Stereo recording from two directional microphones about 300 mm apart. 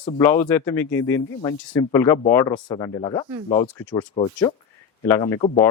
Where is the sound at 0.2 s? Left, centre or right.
Centre.